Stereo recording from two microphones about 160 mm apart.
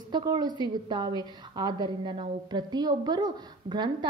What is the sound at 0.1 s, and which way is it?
A woman's voice, 25° right (ahead or behind).